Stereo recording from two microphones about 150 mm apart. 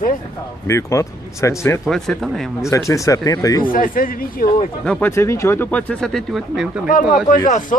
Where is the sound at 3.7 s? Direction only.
65° left (ahead or behind).